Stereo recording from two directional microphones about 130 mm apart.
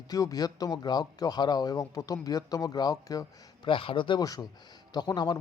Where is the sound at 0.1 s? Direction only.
30° left (ahead or behind).